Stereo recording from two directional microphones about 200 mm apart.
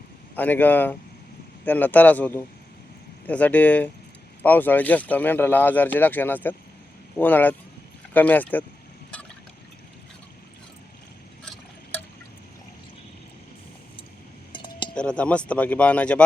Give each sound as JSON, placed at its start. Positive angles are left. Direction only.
{"t": 0.3, "sound": "speech", "side_deg": 10}
{"t": 11.4, "sound": "a sound", "side_deg": 10}
{"t": 14.5, "sound": "cutlery", "side_deg": 25}
{"t": 14.9, "sound": "speech", "side_deg": 5}